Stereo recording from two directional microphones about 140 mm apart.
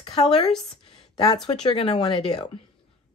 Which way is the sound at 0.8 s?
45° left (ahead or behind).